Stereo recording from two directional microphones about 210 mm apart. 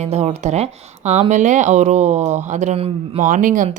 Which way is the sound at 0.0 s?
30° right (ahead or behind).